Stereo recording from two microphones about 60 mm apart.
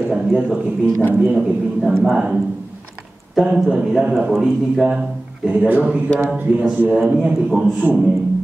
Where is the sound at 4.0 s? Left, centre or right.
Centre.